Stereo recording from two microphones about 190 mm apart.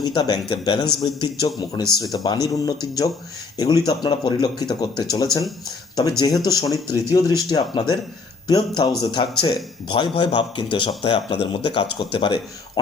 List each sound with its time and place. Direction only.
0.0 s speech: 20° left (ahead or behind)